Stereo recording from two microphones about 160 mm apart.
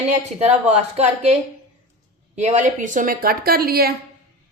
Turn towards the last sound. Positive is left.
turn(degrees=-70)  # may be behind; listen again after turning